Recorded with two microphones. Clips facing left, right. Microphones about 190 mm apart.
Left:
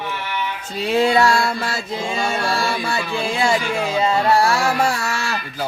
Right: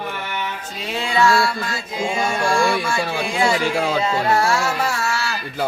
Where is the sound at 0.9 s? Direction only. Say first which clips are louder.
Left 3 dB; 40° left (ahead or behind).